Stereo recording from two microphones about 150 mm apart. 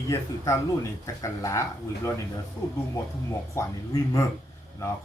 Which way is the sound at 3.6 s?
20° left (ahead or behind).